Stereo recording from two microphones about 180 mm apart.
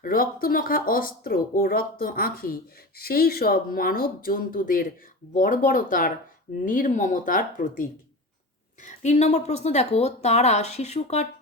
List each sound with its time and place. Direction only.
0.0 s speech: 50° left (ahead or behind)